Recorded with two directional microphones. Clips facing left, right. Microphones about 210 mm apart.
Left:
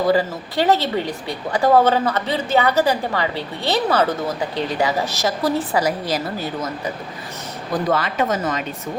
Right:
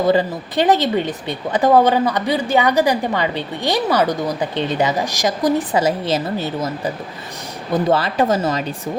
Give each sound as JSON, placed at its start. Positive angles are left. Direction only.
{"t": 0.1, "sound": "speech", "side_deg": -20}